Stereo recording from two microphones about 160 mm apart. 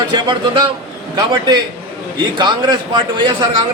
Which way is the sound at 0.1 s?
30° right (ahead or behind).